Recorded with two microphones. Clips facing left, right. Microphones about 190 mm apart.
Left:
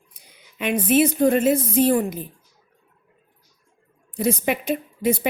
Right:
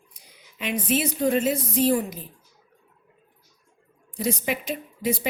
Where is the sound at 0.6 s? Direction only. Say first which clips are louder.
Left 7 dB; 55° left (ahead or behind).